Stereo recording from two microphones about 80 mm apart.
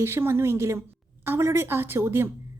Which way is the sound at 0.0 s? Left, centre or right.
Right.